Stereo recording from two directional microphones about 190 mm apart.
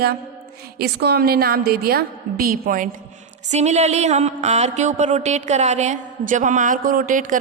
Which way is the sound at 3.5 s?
35° right (ahead or behind).